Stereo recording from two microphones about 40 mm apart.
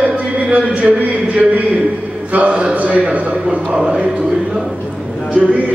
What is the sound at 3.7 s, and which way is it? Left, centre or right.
Speech, centre.